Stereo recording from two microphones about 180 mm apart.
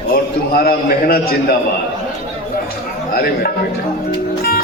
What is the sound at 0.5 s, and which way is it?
A man's voice, 55° left (ahead or behind).